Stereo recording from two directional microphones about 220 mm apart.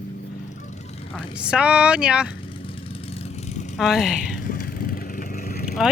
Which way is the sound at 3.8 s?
Centre (ahead or behind).